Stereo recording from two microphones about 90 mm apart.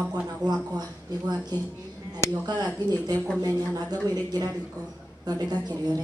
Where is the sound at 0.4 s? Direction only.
50° right (ahead or behind).